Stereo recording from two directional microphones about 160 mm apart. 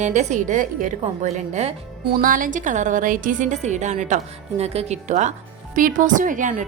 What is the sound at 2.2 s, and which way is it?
A woman's voice, 55° right (ahead or behind).